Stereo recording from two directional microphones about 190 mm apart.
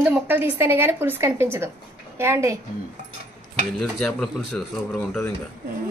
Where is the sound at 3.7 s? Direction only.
Centre (ahead or behind).